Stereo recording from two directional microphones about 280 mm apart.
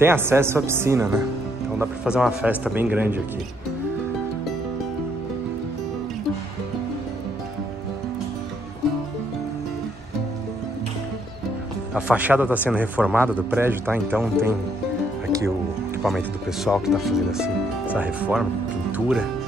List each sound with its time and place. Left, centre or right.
0.0 s speech: centre
11.9 s speech: centre
16.0 s speech: centre